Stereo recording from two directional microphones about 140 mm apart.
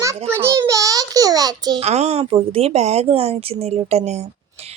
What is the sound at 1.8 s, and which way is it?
Speech, 50° right (ahead or behind).